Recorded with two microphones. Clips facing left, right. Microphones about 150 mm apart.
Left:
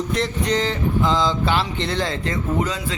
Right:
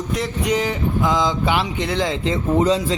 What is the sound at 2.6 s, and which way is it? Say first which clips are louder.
Speech: right 7 dB; 35° right (ahead or behind).